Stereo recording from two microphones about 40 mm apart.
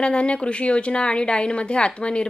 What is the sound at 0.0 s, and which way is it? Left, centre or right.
Speech, left.